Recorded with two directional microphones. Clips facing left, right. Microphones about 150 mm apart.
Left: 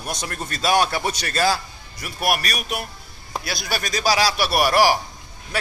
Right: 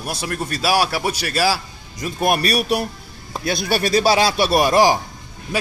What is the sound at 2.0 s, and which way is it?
A man's voice, 25° right (ahead or behind).